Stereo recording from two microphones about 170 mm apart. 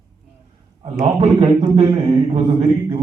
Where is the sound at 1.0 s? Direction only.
35° right (ahead or behind).